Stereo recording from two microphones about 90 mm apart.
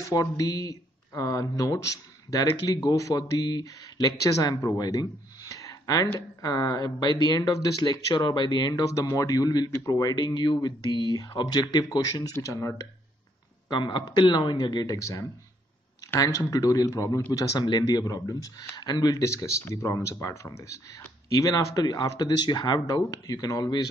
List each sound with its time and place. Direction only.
0.1 s speech: 45° left (ahead or behind)
4.7 s a sound: 45° left (ahead or behind)
6.1 s speech: 45° left (ahead or behind)
8.8 s speech: 35° left (ahead or behind)
13.7 s speech: 55° left (ahead or behind)
16.2 s speech: 40° left (ahead or behind)